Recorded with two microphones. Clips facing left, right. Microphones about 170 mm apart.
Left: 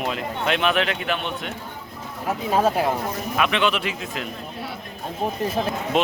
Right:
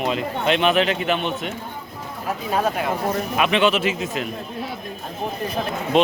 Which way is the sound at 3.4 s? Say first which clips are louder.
Right 3 dB; centre (ahead or behind).